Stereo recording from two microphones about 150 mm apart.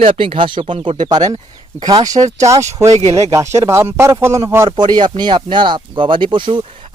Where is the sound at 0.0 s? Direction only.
35° right (ahead or behind).